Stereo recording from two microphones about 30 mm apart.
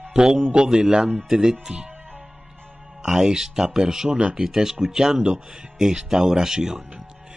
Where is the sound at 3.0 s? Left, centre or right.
Centre.